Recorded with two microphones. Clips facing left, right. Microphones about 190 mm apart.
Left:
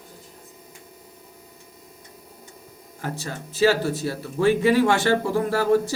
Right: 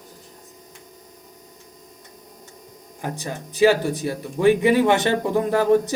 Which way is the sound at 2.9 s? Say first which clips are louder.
Right 2 dB; 15° right (ahead or behind).